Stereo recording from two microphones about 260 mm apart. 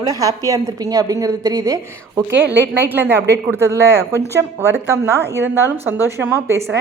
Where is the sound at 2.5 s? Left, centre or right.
Right.